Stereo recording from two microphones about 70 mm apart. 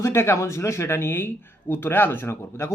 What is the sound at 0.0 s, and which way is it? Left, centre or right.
A man's voice, left.